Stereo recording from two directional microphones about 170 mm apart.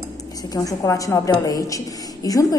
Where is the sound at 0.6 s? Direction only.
20° left (ahead or behind).